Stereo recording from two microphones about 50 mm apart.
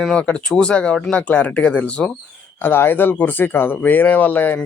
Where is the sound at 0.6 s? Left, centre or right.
Left.